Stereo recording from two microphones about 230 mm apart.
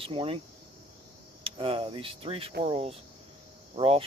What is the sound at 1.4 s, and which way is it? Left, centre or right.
Speech, right.